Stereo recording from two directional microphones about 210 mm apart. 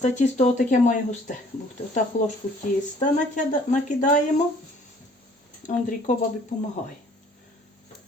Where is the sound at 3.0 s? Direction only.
35° left (ahead or behind).